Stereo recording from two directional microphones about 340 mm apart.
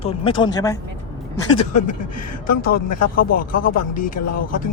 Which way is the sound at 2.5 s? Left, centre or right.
Left.